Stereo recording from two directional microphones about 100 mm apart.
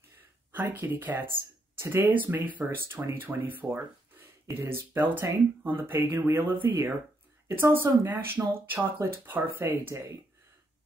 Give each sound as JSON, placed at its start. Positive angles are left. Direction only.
{"t": 0.5, "sound": "speech", "side_deg": -20}